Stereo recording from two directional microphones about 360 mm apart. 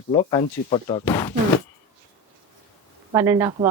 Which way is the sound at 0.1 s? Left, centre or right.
Centre.